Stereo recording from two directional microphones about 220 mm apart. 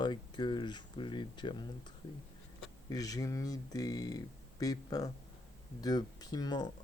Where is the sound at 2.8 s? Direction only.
15° left (ahead or behind).